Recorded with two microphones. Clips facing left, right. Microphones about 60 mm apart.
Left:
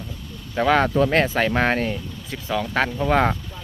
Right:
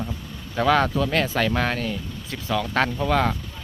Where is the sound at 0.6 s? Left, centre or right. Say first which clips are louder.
Left 1 dB; centre.